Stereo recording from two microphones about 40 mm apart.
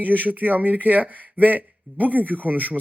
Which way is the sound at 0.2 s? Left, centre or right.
Right.